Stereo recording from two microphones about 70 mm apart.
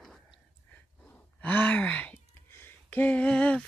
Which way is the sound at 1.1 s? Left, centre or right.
Left.